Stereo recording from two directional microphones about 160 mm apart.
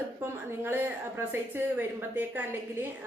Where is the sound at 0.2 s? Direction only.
15° right (ahead or behind).